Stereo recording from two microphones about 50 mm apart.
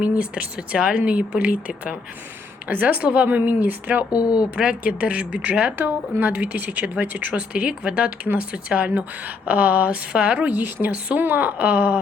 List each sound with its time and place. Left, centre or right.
0.0 s a woman's voice: right
4.5 s speech: right
5.7 s speech: right
10.5 s a woman's voice: right